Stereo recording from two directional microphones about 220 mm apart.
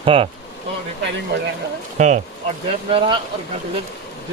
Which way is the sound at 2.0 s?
30° right (ahead or behind).